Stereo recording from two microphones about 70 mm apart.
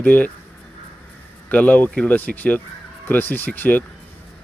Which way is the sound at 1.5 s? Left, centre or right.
Left.